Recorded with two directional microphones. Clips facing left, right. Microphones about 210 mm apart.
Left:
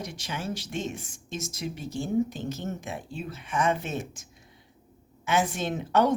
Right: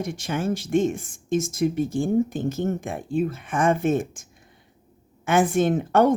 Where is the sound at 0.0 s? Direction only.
50° right (ahead or behind).